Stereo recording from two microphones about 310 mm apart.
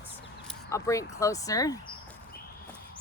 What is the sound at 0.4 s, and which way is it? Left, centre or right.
Speech, centre.